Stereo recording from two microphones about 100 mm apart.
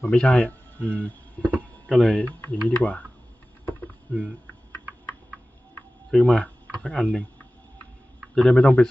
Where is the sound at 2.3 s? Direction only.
15° left (ahead or behind).